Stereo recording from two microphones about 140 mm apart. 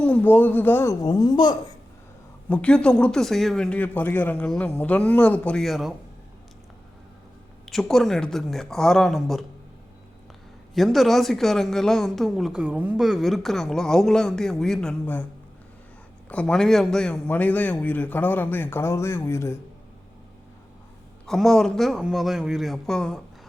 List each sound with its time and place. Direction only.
0.0 s a man's voice: 15° left (ahead or behind)
1.0 s a woman's voice: 30° left (ahead or behind)
2.5 s a man's voice: 10° left (ahead or behind)
7.6 s speech: 5° left (ahead or behind)
10.8 s speech: centre (ahead or behind)
16.3 s a man's voice: 5° left (ahead or behind)
21.2 s speech: centre (ahead or behind)